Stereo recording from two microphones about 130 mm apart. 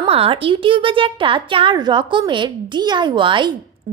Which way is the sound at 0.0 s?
50° right (ahead or behind).